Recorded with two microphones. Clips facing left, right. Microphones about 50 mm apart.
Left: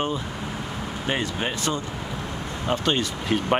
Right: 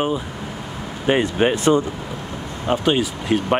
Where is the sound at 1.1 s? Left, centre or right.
Right.